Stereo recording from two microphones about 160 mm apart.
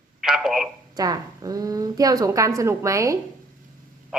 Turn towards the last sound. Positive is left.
turn(degrees=-20)  # may be behind; listen again after turning